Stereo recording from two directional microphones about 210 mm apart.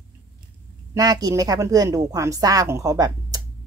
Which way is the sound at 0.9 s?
20° right (ahead or behind).